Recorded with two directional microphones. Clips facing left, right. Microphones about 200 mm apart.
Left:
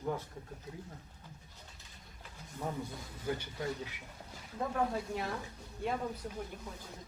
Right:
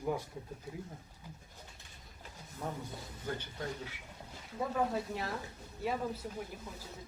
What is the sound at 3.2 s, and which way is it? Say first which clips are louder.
Speech: left 3 dB; 10° left (ahead or behind).